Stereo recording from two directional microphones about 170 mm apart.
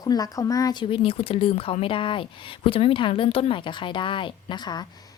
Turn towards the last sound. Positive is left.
turn(degrees=25)  # may be behind; listen again after turning